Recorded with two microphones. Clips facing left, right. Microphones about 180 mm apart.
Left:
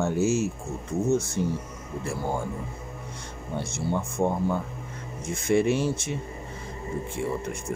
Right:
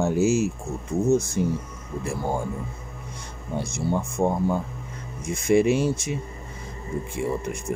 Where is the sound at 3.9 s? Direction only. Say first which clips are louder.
Right 2 dB; 10° right (ahead or behind).